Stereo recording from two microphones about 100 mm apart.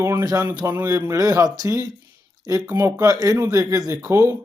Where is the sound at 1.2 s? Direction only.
35° right (ahead or behind).